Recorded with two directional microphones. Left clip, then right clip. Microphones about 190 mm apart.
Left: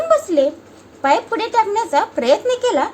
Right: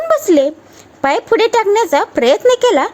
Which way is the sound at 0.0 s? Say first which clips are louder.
Right 3 dB; 45° right (ahead or behind).